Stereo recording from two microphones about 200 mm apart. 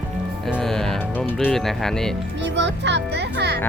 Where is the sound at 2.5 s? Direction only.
60° right (ahead or behind).